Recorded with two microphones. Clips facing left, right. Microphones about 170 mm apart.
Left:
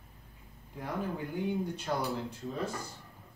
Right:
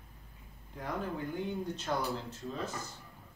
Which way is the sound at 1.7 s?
10° left (ahead or behind).